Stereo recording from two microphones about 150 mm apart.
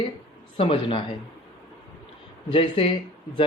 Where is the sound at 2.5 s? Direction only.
35° left (ahead or behind).